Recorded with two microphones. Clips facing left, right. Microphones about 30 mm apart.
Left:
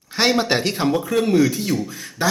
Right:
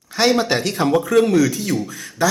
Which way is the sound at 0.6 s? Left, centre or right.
Left.